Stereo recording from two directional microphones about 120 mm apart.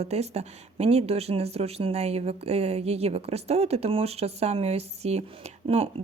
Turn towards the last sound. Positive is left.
turn(degrees=-55)  # may be behind; listen again after turning